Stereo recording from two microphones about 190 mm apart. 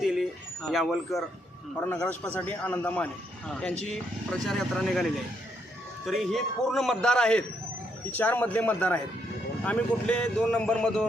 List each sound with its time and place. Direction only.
0.0 s a man's voice: centre (ahead or behind)
6.1 s a man's voice: centre (ahead or behind)